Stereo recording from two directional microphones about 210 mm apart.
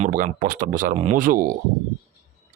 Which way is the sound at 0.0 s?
35° right (ahead or behind).